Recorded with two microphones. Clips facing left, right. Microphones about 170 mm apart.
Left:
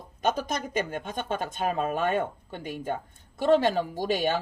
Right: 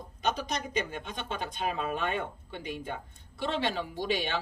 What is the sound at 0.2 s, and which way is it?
Speech, 50° left (ahead or behind).